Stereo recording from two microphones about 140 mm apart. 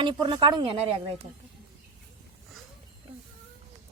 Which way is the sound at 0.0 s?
30° right (ahead or behind).